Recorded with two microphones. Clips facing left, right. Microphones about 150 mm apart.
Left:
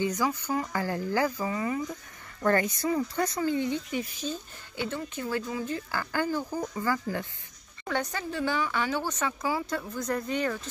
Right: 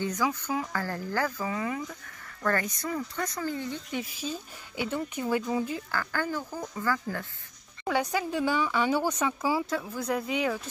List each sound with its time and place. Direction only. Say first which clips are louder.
0.0 s speech: left 1 dB; 10° left (ahead or behind)
1.5 s speech: left 1 dB; centre (ahead or behind)
2.4 s speech: left 4 dB; 25° left (ahead or behind)
3.9 s speech: left 1 dB; 5° right (ahead or behind)
4.7 s speech: right 2 dB; 15° right (ahead or behind)
5.9 s speech: left 2 dB; 15° left (ahead or behind)
7.8 s speech: right 3 dB; 10° right (ahead or behind)